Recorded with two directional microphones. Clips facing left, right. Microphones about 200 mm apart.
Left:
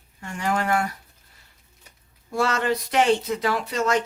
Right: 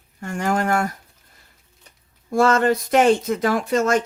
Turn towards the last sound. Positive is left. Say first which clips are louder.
# right 4 dB
turn(degrees=-50)  # may be behind; listen again after turning